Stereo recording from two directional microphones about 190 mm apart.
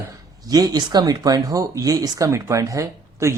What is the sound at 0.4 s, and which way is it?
Speech, 20° right (ahead or behind).